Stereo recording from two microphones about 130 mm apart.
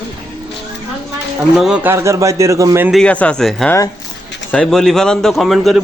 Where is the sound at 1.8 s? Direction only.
20° right (ahead or behind).